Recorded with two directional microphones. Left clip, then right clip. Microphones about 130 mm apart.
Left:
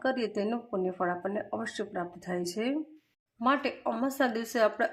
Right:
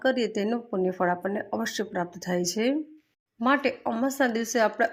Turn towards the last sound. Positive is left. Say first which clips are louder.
# right 3 dB
turn(degrees=-25)  # may be behind; listen again after turning